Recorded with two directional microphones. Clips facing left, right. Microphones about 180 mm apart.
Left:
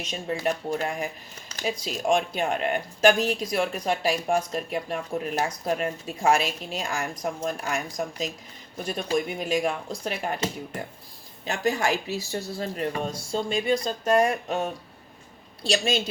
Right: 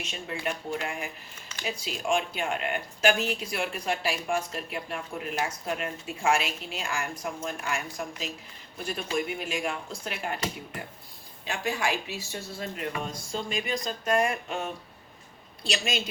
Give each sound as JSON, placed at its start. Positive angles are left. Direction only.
{"t": 0.1, "sound": "speech", "side_deg": 40}
{"t": 11.4, "sound": "speech", "side_deg": 40}